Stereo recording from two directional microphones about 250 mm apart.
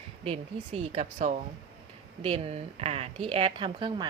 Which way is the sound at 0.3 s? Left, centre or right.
Right.